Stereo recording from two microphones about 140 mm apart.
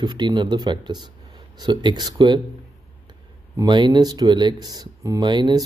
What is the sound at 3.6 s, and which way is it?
Speech, 35° right (ahead or behind).